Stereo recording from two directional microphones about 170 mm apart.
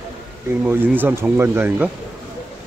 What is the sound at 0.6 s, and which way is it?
Speech, 10° right (ahead or behind).